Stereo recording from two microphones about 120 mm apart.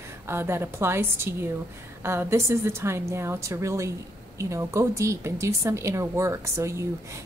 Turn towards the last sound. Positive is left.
turn(degrees=-25)  # may be behind; listen again after turning